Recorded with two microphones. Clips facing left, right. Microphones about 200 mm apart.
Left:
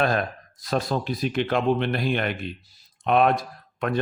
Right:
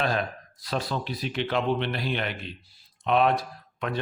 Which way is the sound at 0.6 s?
45° left (ahead or behind).